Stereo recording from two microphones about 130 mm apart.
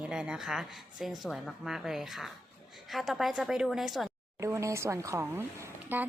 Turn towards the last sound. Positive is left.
turn(degrees=-15)  # may be behind; listen again after turning